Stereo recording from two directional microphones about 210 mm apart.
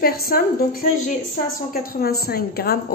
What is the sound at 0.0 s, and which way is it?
A woman's voice, 45° left (ahead or behind).